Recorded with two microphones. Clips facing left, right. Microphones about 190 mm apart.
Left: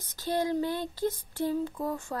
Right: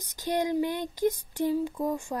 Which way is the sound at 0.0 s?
15° right (ahead or behind).